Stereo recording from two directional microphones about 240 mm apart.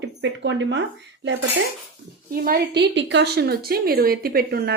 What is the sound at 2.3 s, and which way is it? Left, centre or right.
A woman's voice, right.